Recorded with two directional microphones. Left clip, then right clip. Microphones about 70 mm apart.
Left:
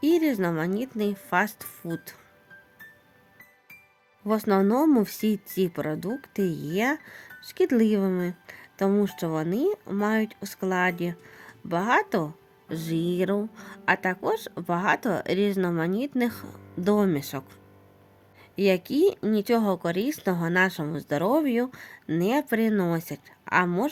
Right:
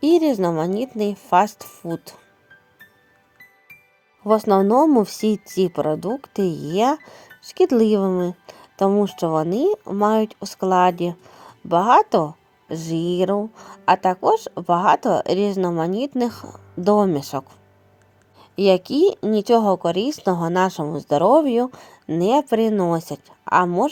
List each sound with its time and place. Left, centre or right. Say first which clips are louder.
0.0 s speech: right 6 dB; right
4.3 s speech: right 8 dB; right
8.2 s a sound: right 7 dB; right
9.0 s speech: right 8 dB; right
18.3 s a woman's voice: right 7 dB; right
19.8 s speech: right 7 dB; centre